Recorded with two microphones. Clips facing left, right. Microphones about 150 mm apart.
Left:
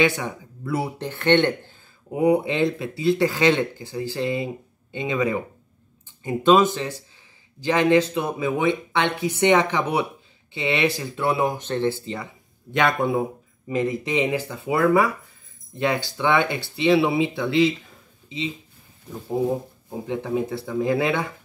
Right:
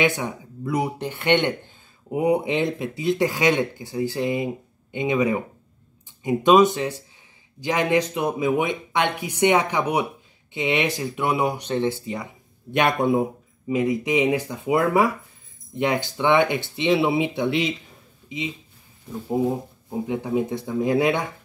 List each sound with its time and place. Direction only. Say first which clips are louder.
0.0 s speech: left 1 dB; 15° right (ahead or behind)
20.1 s speech: even; 15° right (ahead or behind)